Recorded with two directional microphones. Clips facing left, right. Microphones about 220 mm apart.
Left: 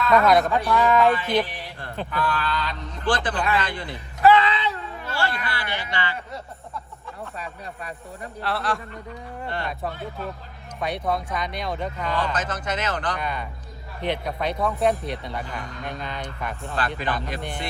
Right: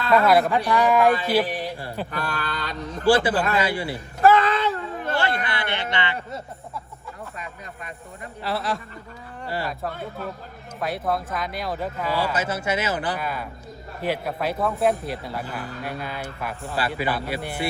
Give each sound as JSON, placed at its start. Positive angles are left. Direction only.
{"t": 0.1, "sound": "a man's voice", "side_deg": -5}
{"t": 2.0, "sound": "speech", "side_deg": -45}
{"t": 3.0, "sound": "a man's voice", "side_deg": -10}
{"t": 3.9, "sound": "a sound", "side_deg": -45}
{"t": 5.5, "sound": "a sound", "side_deg": -20}
{"t": 7.3, "sound": "speech", "side_deg": 35}
{"t": 8.4, "sound": "speech", "side_deg": 0}